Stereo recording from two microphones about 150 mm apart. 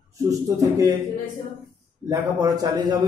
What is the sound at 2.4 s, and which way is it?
Speech, 25° right (ahead or behind).